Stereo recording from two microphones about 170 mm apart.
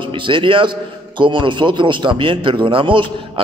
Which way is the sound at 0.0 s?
30° right (ahead or behind).